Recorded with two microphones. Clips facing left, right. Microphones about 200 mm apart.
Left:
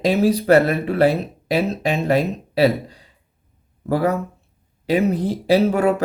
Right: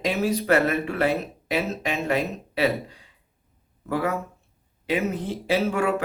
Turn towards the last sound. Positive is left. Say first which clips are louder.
# left 6 dB
turn(degrees=35)  # may be behind; listen again after turning